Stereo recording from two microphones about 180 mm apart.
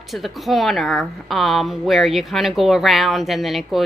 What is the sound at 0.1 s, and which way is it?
A woman's voice, centre (ahead or behind).